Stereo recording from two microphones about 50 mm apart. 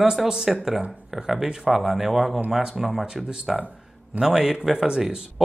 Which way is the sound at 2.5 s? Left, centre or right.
Centre.